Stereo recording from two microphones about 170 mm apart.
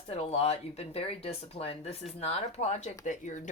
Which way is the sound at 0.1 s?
35° left (ahead or behind).